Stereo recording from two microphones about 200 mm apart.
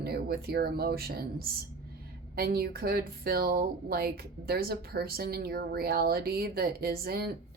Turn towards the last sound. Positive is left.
turn(degrees=-50)  # may be behind; listen again after turning